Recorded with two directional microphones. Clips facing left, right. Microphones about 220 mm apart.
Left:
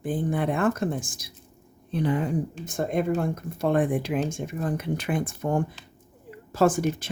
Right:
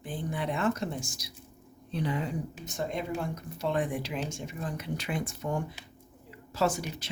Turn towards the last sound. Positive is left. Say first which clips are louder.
# left 8 dB
turn(degrees=50)  # may be behind; listen again after turning